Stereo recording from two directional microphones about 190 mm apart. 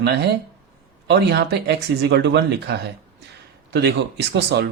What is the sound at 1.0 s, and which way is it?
Speech, 60° right (ahead or behind).